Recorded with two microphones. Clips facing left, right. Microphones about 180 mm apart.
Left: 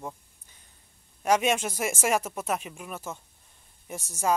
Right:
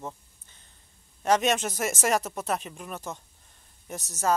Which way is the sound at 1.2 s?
10° left (ahead or behind).